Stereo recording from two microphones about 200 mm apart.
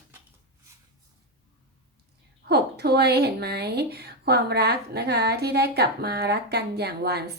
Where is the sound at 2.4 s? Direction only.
55° right (ahead or behind).